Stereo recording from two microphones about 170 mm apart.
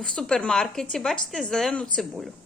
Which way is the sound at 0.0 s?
5° left (ahead or behind).